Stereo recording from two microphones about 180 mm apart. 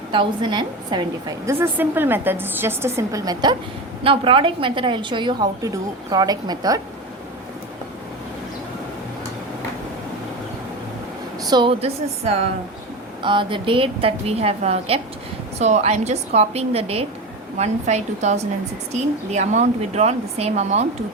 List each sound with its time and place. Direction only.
0.1 s a woman's voice: 25° right (ahead or behind)
1.5 s a woman's voice: 15° right (ahead or behind)
4.0 s a woman's voice: 30° right (ahead or behind)
11.4 s a woman's voice: 25° right (ahead or behind)